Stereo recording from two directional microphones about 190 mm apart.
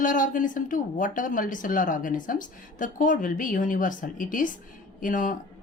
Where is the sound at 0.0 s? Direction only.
45° left (ahead or behind).